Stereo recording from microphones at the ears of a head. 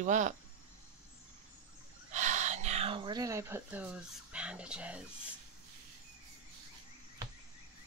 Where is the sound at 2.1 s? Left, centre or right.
Right.